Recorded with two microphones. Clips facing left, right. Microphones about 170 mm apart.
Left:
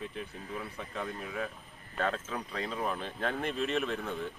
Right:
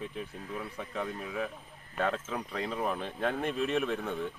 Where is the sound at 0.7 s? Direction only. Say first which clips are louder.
Right 2 dB; 10° right (ahead or behind).